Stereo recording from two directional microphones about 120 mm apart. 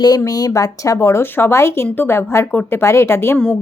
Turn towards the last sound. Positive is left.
turn(degrees=20)  # may be behind; listen again after turning